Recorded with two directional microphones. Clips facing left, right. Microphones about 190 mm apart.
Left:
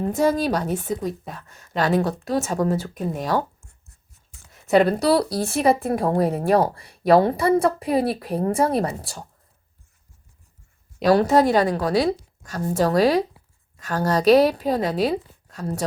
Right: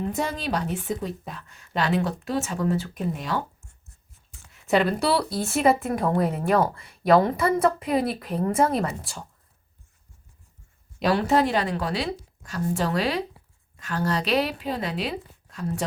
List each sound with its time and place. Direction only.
0.0 s speech: 40° left (ahead or behind)
4.5 s a woman's voice: 40° left (ahead or behind)
11.1 s a woman's voice: 40° left (ahead or behind)